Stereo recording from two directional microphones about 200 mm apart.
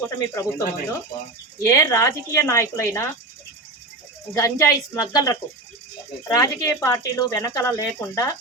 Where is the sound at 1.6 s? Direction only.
15° left (ahead or behind).